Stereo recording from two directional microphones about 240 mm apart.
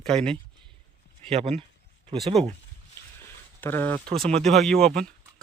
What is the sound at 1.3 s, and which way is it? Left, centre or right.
Speech, right.